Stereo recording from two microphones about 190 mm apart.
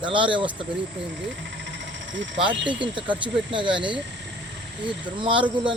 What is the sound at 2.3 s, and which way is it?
Speech, 25° right (ahead or behind).